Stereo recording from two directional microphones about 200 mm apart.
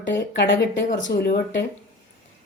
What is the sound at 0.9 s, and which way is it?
Speech, 45° left (ahead or behind).